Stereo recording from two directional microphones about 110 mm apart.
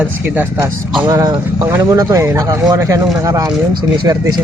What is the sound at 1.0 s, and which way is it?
Speech, 35° right (ahead or behind).